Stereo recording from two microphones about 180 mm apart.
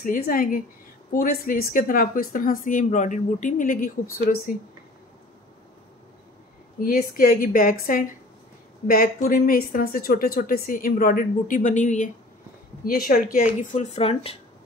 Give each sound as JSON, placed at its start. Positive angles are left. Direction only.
{"t": 0.0, "sound": "speech", "side_deg": 50}
{"t": 6.8, "sound": "speech", "side_deg": 55}
{"t": 12.8, "sound": "speech", "side_deg": 55}
{"t": 13.6, "sound": "speech", "side_deg": 40}